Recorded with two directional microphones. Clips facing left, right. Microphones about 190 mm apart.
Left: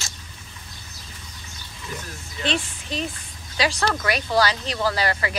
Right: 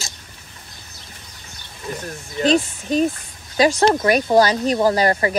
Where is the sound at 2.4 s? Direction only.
40° right (ahead or behind).